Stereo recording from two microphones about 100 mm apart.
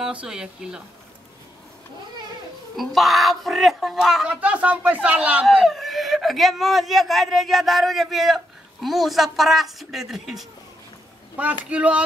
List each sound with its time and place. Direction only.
0.0 s speech: 10° right (ahead or behind)
2.7 s speech: centre (ahead or behind)
4.3 s speech: 15° right (ahead or behind)
11.7 s speech: 15° right (ahead or behind)